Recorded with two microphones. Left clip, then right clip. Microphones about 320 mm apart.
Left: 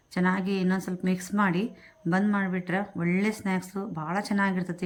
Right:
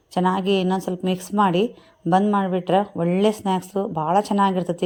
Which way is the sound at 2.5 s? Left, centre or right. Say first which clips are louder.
Right 11 dB; centre.